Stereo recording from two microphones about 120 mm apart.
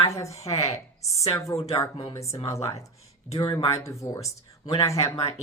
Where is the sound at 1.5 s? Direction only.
25° left (ahead or behind).